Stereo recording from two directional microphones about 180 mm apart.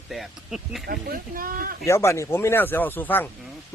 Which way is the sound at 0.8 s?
55° right (ahead or behind).